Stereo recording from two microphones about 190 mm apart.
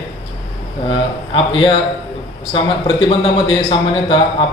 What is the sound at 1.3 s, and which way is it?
A man's voice, 25° left (ahead or behind).